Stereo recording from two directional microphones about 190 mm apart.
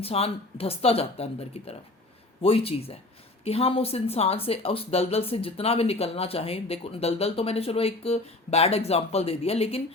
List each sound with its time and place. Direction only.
0.0 s speech: 30° left (ahead or behind)